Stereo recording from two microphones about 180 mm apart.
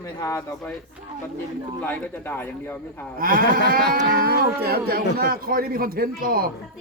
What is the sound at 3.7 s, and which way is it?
Livestock, 55° right (ahead or behind).